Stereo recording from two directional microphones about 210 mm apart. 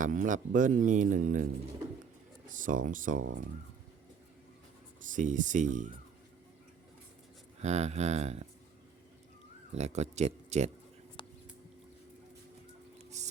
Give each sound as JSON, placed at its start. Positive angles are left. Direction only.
{"t": 0.0, "sound": "speech", "side_deg": -40}
{"t": 2.5, "sound": "speech", "side_deg": -40}
{"t": 5.0, "sound": "speech", "side_deg": -35}
{"t": 7.6, "sound": "speech", "side_deg": -30}
{"t": 9.7, "sound": "speech", "side_deg": -30}
{"t": 13.2, "sound": "a sound", "side_deg": -35}